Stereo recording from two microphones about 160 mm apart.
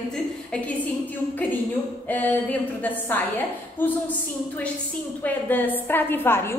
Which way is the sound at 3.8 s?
10° left (ahead or behind).